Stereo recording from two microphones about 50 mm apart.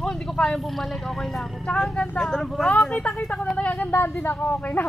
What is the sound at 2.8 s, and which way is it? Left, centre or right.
Speech, left.